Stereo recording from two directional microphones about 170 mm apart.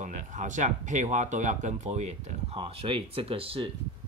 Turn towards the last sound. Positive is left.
turn(degrees=-30)  # may be behind; listen again after turning